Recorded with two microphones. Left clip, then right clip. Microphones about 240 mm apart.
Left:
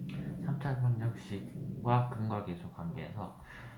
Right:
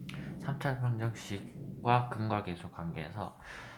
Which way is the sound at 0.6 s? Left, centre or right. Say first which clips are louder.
Right 5 dB; right.